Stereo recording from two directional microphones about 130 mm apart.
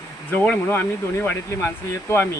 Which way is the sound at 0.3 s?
15° left (ahead or behind).